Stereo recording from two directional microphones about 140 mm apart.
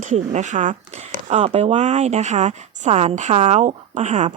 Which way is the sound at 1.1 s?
50° right (ahead or behind).